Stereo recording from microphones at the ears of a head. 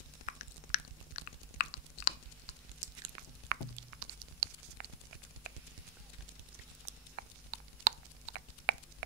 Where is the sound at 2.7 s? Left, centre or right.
Right.